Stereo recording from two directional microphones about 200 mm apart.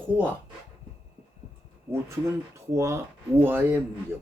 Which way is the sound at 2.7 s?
15° right (ahead or behind).